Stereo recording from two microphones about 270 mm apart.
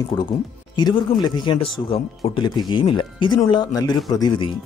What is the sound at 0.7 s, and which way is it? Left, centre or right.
Speech, centre.